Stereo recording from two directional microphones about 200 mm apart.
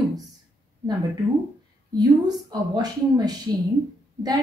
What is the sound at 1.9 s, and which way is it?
Speech, 20° right (ahead or behind).